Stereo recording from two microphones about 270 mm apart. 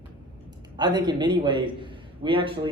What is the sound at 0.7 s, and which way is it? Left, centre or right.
A man's voice, centre.